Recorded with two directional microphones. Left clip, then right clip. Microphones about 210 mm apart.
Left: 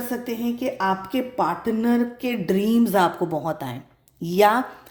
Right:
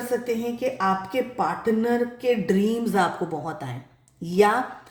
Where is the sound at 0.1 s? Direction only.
40° left (ahead or behind).